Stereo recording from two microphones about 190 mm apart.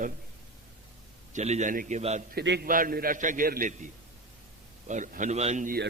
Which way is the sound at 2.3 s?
60° right (ahead or behind).